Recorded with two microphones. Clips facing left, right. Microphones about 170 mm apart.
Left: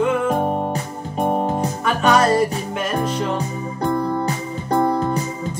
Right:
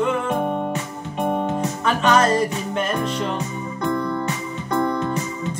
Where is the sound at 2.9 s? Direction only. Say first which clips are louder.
Left 2 dB; 40° left (ahead or behind).